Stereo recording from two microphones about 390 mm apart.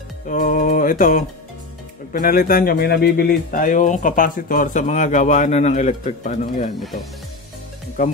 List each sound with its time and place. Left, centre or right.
0.3 s speech: centre
8.0 s speech: centre